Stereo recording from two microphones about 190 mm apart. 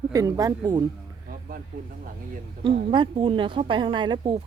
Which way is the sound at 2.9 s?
25° right (ahead or behind).